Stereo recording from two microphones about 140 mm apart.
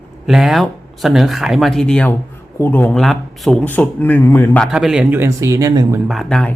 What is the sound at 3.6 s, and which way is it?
Speech, 10° left (ahead or behind).